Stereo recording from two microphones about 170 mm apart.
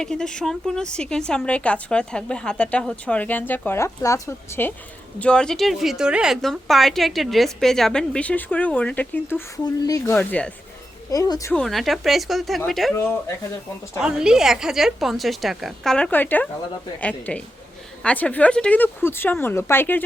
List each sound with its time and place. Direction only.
0.0 s speech: 5° left (ahead or behind)
9.8 s speech: 20° left (ahead or behind)
10.2 s speech: 5° left (ahead or behind)
11.1 s speech: 20° left (ahead or behind)
11.5 s speech: centre (ahead or behind)
12.9 s speech: 15° left (ahead or behind)
14.0 s speech: 5° right (ahead or behind); by 20.0 s 15° left (ahead or behind)